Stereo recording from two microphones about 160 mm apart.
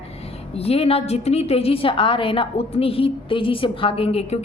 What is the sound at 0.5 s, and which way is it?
Speech, 40° left (ahead or behind).